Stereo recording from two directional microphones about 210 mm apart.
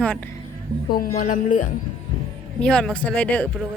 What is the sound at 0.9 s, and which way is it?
Speech, 45° left (ahead or behind).